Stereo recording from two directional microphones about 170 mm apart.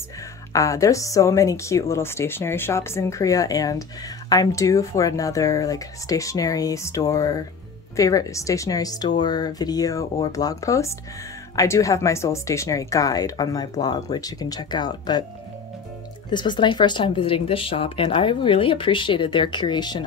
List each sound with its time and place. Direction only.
0.5 s speech: 20° left (ahead or behind)
16.3 s speech: 25° left (ahead or behind)